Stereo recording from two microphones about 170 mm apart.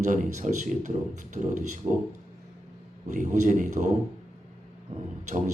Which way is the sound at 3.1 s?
45° right (ahead or behind).